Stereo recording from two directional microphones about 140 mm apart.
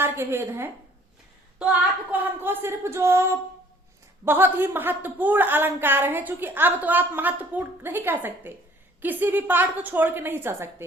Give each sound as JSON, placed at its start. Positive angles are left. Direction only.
{"t": 0.0, "sound": "a woman's voice", "side_deg": -15}
{"t": 2.1, "sound": "a woman's voice", "side_deg": -15}
{"t": 4.3, "sound": "a woman's voice", "side_deg": -15}